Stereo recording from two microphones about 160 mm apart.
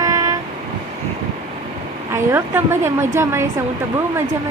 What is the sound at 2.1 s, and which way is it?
A woman's voice, 15° right (ahead or behind).